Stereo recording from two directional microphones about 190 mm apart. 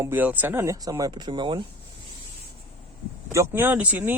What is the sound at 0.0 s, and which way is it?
Speech, 10° right (ahead or behind).